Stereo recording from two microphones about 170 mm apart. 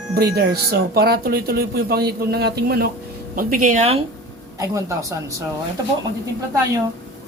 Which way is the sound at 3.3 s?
50° right (ahead or behind).